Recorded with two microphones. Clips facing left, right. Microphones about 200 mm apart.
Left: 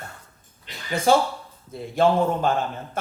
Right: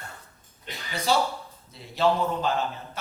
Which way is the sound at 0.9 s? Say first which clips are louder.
Left 6 dB; 50° left (ahead or behind).